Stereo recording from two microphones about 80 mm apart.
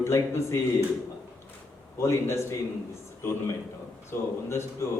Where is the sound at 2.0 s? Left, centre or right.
Left.